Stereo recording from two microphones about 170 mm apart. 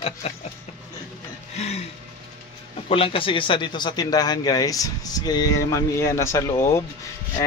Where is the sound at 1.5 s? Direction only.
40° left (ahead or behind).